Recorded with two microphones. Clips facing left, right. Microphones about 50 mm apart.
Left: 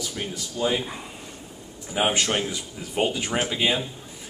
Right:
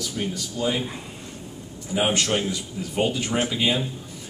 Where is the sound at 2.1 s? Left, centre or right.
Centre.